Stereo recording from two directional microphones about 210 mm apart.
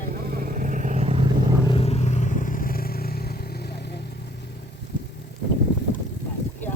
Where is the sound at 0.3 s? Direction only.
40° right (ahead or behind).